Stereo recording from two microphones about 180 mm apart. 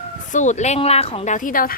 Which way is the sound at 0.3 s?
45° left (ahead or behind).